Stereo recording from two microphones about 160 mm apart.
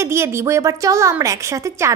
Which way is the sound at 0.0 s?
15° right (ahead or behind).